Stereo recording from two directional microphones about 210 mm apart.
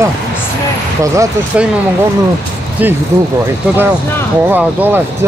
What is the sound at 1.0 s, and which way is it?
Speech, 15° right (ahead or behind).